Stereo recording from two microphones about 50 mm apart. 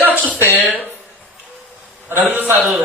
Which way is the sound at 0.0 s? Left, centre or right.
Right.